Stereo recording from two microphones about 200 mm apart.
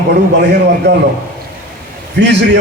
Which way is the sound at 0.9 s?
60° right (ahead or behind).